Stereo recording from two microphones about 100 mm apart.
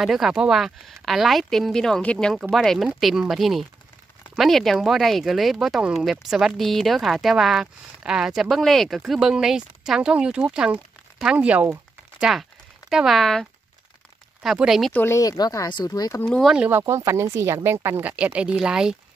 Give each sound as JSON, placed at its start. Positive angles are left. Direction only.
{"t": 0.0, "sound": "a woman's voice", "side_deg": 0}
{"t": 12.2, "sound": "a woman's voice", "side_deg": 0}
{"t": 14.9, "sound": "speech", "side_deg": 20}
{"t": 15.1, "sound": "speech", "side_deg": 40}
{"t": 16.3, "sound": "a woman's voice", "side_deg": 0}
{"t": 16.8, "sound": "speech", "side_deg": -30}